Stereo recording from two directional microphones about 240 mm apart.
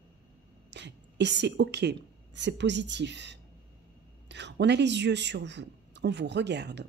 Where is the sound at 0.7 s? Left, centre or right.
Right.